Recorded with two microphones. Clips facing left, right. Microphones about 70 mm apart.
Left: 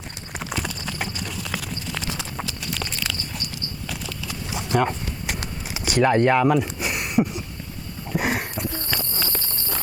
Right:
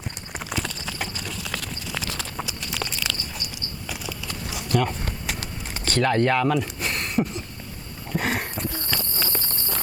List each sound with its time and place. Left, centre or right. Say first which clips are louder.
0.3 s clip-clop: left 1 dB; centre
2.5 s a sound: left 1 dB; centre
4.5 s clip-clop: left 2 dB; left
5.8 s speech: left 3 dB; centre
8.1 s walk: left 1 dB; centre